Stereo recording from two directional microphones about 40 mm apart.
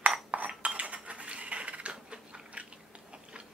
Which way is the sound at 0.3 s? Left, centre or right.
Right.